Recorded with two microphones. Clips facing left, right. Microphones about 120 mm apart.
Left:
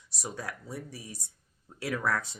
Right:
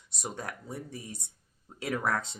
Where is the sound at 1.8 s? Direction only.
20° right (ahead or behind).